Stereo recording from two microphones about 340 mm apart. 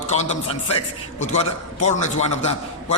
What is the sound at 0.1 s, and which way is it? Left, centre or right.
A man's voice, centre.